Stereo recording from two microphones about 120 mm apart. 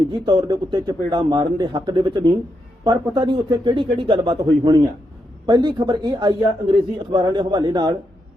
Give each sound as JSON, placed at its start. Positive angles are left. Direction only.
{"t": 0.0, "sound": "a man's voice", "side_deg": -35}